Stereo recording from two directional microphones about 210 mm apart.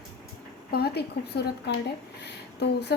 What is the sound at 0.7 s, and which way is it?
A woman's voice, 50° left (ahead or behind).